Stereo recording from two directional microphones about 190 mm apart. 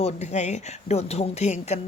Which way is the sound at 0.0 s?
35° left (ahead or behind).